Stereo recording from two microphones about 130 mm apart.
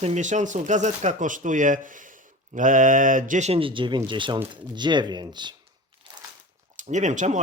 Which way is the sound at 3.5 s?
45° right (ahead or behind).